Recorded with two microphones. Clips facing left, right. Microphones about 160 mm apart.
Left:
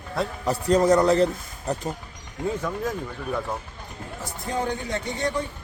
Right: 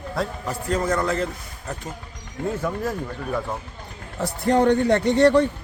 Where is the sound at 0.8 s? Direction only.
15° left (ahead or behind).